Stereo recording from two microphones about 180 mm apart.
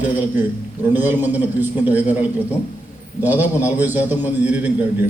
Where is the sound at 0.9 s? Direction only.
10° right (ahead or behind).